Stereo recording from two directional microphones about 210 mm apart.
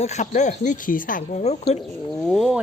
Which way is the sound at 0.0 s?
35° left (ahead or behind).